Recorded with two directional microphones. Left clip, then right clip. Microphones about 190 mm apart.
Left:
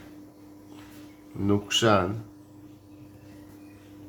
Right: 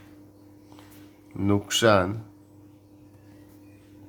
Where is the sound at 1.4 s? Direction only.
45° right (ahead or behind).